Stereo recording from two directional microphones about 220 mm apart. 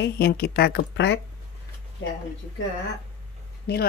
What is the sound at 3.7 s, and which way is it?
Speech, 45° left (ahead or behind).